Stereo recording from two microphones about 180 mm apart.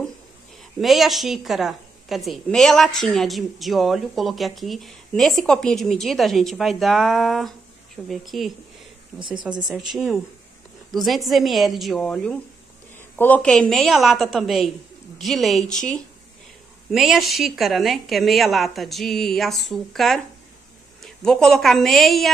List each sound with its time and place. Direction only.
0.7 s a woman's voice: centre (ahead or behind)
9.2 s speech: 25° right (ahead or behind)
9.7 s a woman's voice: centre (ahead or behind)